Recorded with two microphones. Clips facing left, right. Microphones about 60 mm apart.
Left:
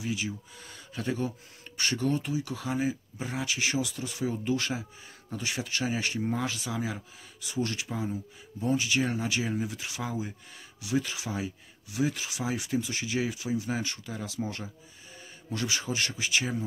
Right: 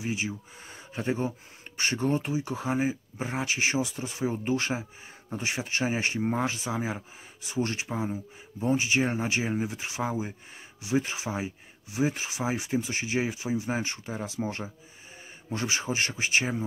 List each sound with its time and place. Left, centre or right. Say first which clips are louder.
0.0 s speech: right 1 dB; right